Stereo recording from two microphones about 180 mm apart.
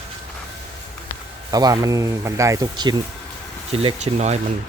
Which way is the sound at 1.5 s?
20° right (ahead or behind).